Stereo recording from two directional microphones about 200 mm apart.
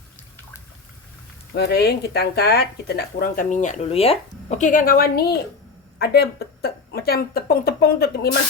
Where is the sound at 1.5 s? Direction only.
55° left (ahead or behind).